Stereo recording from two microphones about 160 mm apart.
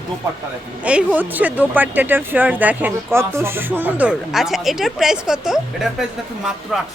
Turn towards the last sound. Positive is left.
turn(degrees=0)  # may be behind; listen again after turning